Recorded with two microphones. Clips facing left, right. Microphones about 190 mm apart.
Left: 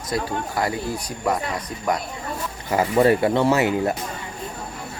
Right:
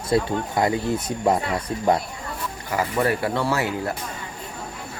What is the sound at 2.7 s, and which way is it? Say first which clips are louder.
Speech: left 5 dB; 25° left (ahead or behind).